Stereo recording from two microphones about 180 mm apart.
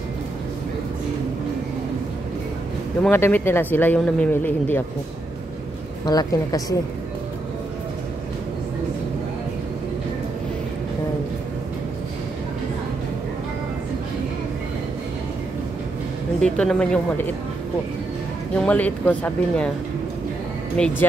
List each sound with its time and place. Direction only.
3.0 s speech: 10° left (ahead or behind)
6.0 s a woman's voice: 20° left (ahead or behind)
16.3 s speech: 5° left (ahead or behind)
18.6 s speech: 5° left (ahead or behind)
20.8 s speech: 5° left (ahead or behind)